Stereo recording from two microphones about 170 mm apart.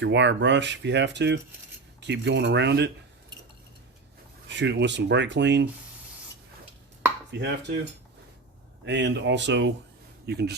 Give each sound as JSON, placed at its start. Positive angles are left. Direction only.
{"t": 0.0, "sound": "speech", "side_deg": -90}
{"t": 4.4, "sound": "speech", "side_deg": -90}
{"t": 7.3, "sound": "speech", "side_deg": -90}
{"t": 8.8, "sound": "speech", "side_deg": -90}
{"t": 10.2, "sound": "speech", "side_deg": -75}